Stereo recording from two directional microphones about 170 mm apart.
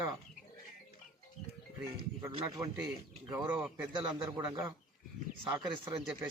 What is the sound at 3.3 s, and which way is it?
A man's voice, 10° right (ahead or behind).